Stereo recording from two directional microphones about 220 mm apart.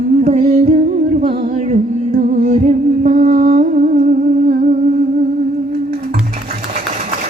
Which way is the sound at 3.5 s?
40° right (ahead or behind).